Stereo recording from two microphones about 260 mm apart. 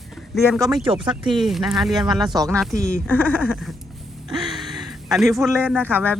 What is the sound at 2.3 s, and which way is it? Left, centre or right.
Speech, centre.